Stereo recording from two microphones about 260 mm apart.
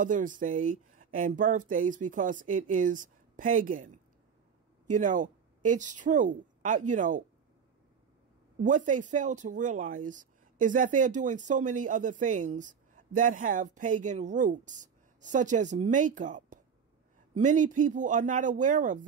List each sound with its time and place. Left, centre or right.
0.0 s a woman's voice: right
8.5 s speech: right